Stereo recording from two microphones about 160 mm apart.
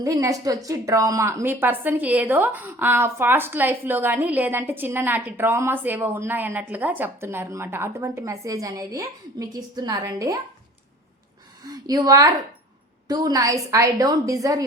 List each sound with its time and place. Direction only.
0.0 s a woman's voice: 20° right (ahead or behind)
11.6 s a woman's voice: 25° right (ahead or behind)